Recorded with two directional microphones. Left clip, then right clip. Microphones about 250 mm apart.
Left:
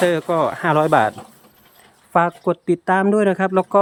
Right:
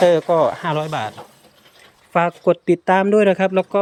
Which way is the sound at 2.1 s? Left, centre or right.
Centre.